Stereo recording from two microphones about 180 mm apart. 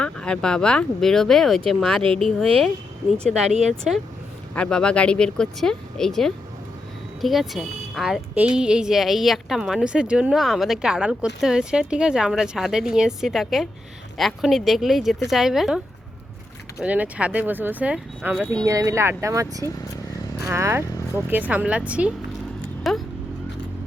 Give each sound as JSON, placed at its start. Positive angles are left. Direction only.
{"t": 0.0, "sound": "a woman's voice", "side_deg": 5}
{"t": 3.5, "sound": "speech", "side_deg": -40}
{"t": 4.5, "sound": "a woman's voice", "side_deg": 5}
{"t": 16.8, "sound": "speech", "side_deg": -10}
{"t": 18.6, "sound": "speech", "side_deg": -15}